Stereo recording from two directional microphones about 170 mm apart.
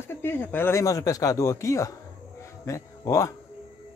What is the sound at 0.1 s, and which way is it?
A man's voice, 15° left (ahead or behind).